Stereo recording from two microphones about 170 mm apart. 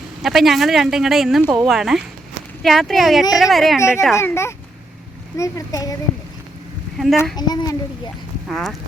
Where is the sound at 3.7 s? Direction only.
15° left (ahead or behind).